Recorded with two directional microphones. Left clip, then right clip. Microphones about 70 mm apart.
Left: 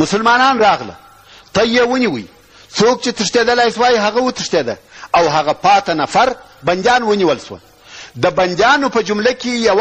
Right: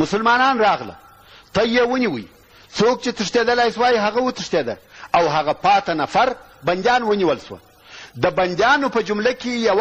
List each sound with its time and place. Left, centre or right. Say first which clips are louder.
0.0 s a man's voice: left 5 dB; right